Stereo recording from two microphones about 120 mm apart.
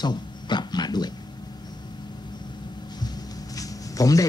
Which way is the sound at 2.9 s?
35° left (ahead or behind).